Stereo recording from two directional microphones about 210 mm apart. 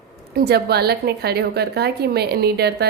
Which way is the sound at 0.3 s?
50° right (ahead or behind).